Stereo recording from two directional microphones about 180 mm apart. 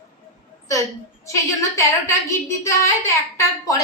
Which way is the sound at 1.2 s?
15° left (ahead or behind).